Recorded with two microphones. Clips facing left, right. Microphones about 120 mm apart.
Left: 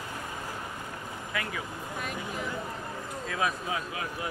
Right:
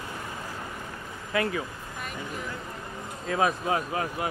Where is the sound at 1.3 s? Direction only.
40° right (ahead or behind).